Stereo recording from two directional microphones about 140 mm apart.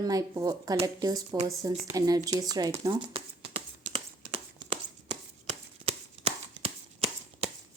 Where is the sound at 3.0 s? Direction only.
40° right (ahead or behind).